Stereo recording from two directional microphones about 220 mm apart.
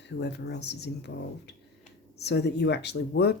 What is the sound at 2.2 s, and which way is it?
A woman's voice, 50° left (ahead or behind).